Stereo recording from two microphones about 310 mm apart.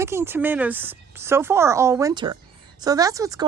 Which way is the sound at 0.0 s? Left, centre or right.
Centre.